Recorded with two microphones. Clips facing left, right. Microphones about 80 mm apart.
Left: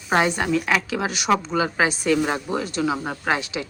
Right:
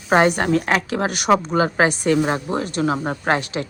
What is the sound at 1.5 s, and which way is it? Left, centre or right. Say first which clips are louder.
Speech: right 4 dB; right.